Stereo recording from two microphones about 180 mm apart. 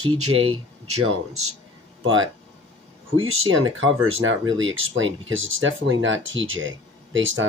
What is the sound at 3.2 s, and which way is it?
Speech, 90° right.